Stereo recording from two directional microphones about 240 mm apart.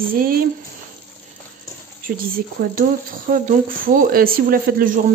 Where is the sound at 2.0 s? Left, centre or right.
Right.